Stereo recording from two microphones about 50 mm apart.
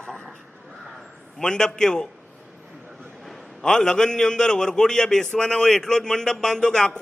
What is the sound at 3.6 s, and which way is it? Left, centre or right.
A man's voice, centre.